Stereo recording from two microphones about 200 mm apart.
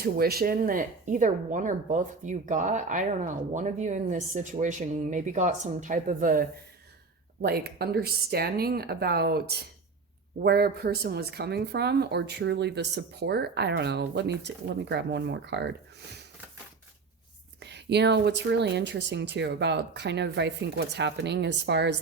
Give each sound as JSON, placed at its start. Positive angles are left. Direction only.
{"t": 0.0, "sound": "speech", "side_deg": -50}
{"t": 17.6, "sound": "speech", "side_deg": -60}